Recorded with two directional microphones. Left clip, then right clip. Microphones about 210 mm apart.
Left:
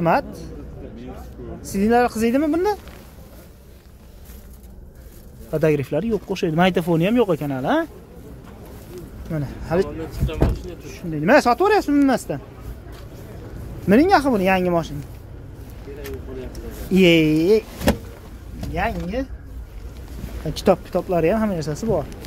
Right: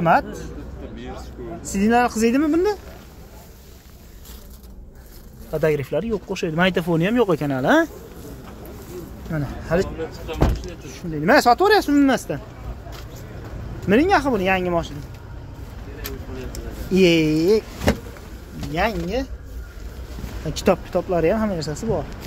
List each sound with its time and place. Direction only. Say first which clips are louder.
0.0 s speech: right 2 dB; 20° left (ahead or behind)
1.7 s speech: left 1 dB; 20° left (ahead or behind)
5.5 s speech: left 1 dB; 15° left (ahead or behind); by 7.9 s 10° right (ahead or behind)
9.3 s speech: right 1 dB; 10° left (ahead or behind)
10.9 s speech: left 1 dB; 15° left (ahead or behind)
13.8 s speech: left 2 dB; 20° left (ahead or behind)
16.9 s speech: left 1 dB; 15° left (ahead or behind)
18.8 s speech: right 2 dB; 20° right (ahead or behind)
20.5 s speech: left 1 dB; 10° left (ahead or behind)